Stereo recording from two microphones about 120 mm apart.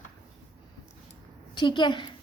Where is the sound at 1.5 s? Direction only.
40° left (ahead or behind).